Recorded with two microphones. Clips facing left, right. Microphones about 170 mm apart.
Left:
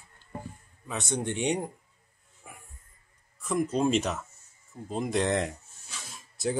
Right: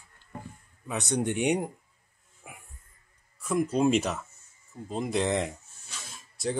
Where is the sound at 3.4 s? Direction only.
5° right (ahead or behind).